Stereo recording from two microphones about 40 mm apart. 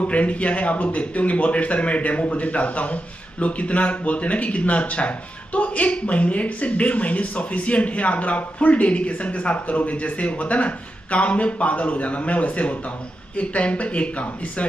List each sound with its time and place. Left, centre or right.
0.1 s a man's voice: left